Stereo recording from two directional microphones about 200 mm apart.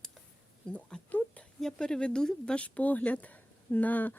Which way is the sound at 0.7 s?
5° left (ahead or behind).